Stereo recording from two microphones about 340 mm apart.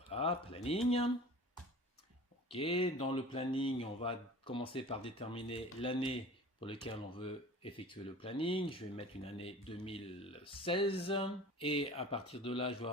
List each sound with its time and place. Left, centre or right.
0.1 s speech: centre
2.5 s speech: centre